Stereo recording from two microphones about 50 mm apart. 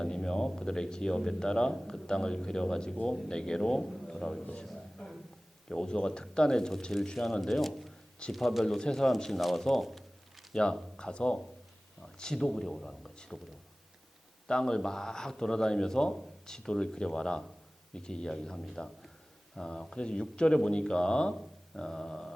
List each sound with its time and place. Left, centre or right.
0.0 s speech: centre
4.6 s a sound: centre
5.6 s a man's voice: centre
8.6 s speech: centre
9.4 s a sound: centre
10.5 s a man's voice: centre
14.4 s speech: centre